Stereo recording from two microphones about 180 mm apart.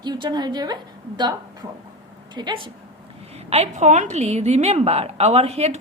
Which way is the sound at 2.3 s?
25° right (ahead or behind).